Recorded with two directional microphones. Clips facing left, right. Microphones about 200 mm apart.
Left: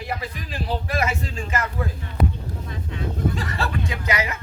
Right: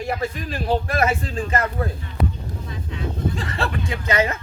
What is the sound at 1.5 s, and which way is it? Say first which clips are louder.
Speech: right 3 dB; 35° right (ahead or behind).